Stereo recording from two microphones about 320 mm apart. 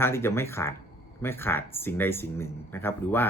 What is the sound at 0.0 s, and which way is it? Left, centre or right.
Speech, centre.